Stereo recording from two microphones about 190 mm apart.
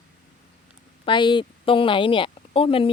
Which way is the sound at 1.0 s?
25° left (ahead or behind).